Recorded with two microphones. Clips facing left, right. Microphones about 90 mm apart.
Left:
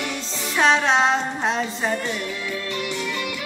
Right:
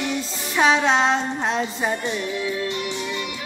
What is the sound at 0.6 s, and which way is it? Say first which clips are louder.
Music: even; 5° right (ahead or behind).